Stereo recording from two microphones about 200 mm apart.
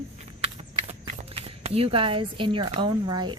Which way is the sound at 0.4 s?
30° right (ahead or behind).